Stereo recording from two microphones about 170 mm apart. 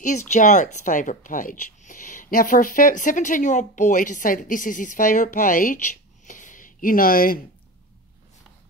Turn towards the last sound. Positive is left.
turn(degrees=60)  # may be behind; listen again after turning